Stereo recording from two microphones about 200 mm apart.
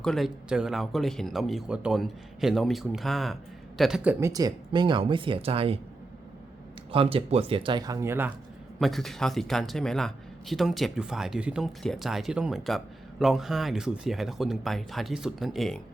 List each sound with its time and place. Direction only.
0.0 s speech: centre (ahead or behind); by 5.8 s 30° right (ahead or behind)
6.9 s speech: 25° right (ahead or behind); by 8.3 s 10° right (ahead or behind)
8.8 s speech: centre (ahead or behind)